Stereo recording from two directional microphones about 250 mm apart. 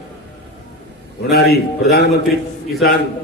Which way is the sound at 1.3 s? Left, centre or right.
Left.